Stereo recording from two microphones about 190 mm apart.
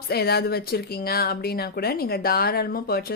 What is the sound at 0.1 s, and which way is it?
Speech, 55° left (ahead or behind).